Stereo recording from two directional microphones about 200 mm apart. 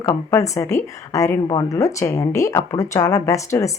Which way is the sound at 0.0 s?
15° left (ahead or behind).